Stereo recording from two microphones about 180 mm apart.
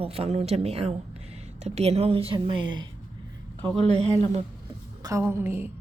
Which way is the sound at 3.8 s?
35° right (ahead or behind).